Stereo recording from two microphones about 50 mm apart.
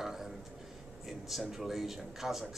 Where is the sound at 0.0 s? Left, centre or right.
Centre.